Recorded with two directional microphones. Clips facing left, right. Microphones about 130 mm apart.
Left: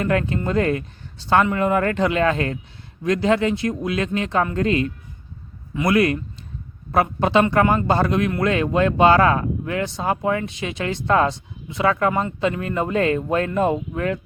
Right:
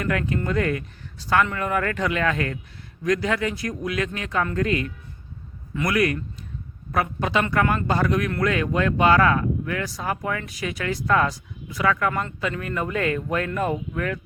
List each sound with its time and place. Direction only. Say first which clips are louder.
0.0 s speech: left 4 dB; 30° left (ahead or behind)